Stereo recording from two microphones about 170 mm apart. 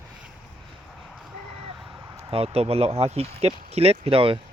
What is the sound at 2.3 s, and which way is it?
Speech, 35° right (ahead or behind).